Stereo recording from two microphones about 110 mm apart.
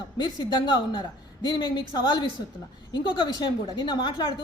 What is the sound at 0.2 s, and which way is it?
A woman's voice, 40° left (ahead or behind).